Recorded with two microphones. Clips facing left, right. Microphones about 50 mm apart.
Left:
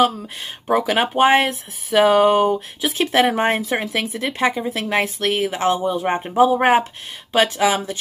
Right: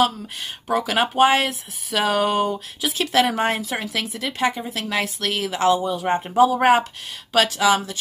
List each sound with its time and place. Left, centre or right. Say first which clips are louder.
0.7 s speech: left 3 dB; left